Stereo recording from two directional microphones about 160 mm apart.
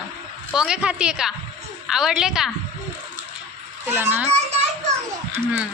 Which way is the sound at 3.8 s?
15° right (ahead or behind).